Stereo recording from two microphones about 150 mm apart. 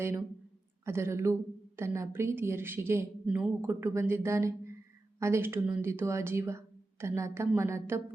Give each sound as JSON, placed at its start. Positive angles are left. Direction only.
{"t": 0.9, "sound": "speech", "side_deg": -15}